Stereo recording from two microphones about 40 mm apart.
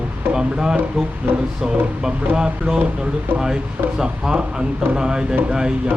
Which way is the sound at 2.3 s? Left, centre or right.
Right.